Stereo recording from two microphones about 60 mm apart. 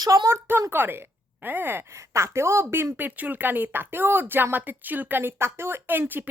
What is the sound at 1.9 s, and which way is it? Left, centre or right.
A woman's voice, right.